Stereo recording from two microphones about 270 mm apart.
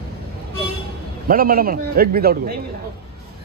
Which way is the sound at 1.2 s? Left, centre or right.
Right.